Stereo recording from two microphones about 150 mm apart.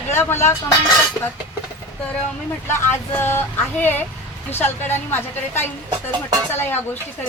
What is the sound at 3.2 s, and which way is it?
Speech, 15° left (ahead or behind).